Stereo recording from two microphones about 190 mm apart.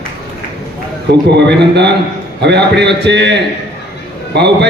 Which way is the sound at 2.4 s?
65° right (ahead or behind).